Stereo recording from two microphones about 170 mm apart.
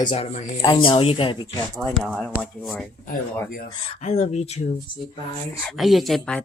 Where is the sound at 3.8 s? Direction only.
35° left (ahead or behind).